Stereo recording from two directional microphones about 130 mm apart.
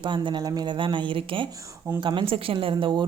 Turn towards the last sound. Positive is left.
turn(degrees=-35)  # may be behind; listen again after turning